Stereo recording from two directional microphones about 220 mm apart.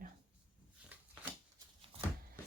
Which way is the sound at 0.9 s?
5° right (ahead or behind).